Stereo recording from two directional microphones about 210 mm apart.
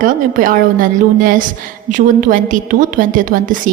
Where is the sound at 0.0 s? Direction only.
40° right (ahead or behind).